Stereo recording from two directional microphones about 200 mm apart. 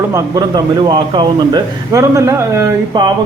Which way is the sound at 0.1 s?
20° right (ahead or behind).